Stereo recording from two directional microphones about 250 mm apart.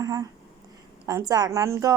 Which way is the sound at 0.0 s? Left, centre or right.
Centre.